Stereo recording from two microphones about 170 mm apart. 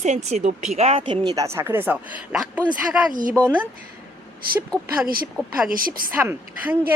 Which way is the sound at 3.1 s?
50° right (ahead or behind).